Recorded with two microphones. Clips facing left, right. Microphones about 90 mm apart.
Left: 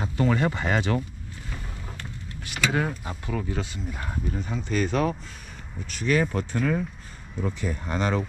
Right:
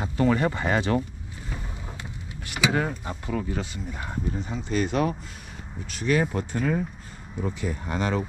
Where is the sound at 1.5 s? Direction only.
10° right (ahead or behind).